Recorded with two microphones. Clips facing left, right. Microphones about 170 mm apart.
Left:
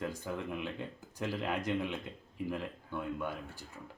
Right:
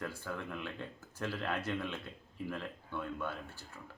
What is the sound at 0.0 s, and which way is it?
Speech, 15° left (ahead or behind).